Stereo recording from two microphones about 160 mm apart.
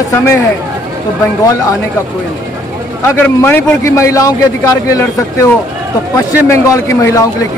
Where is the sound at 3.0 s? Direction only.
15° left (ahead or behind).